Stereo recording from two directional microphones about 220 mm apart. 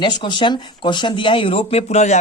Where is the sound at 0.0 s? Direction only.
20° left (ahead or behind).